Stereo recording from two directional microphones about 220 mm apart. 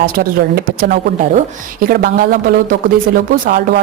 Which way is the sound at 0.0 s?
40° right (ahead or behind).